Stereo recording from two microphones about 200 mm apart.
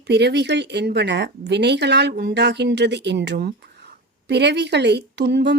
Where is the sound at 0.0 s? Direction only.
60° right (ahead or behind).